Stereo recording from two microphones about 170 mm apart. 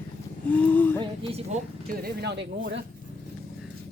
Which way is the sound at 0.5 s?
10° left (ahead or behind).